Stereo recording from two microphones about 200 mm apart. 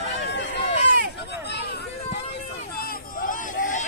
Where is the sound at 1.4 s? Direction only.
55° left (ahead or behind).